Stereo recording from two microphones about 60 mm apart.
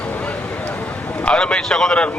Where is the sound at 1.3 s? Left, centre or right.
Centre.